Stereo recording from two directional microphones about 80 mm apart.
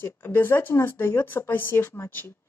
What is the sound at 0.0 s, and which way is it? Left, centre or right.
Speech, left.